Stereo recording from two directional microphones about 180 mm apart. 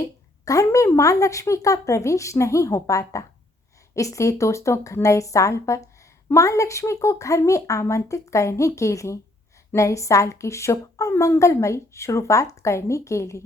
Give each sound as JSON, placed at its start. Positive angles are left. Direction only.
{"t": 0.0, "sound": "a woman's voice", "side_deg": 20}